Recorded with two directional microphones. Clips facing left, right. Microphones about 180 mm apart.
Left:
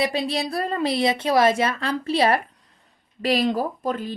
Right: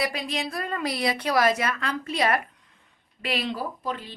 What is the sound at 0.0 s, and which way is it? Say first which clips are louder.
A woman's voice: left 5 dB; 30° left (ahead or behind).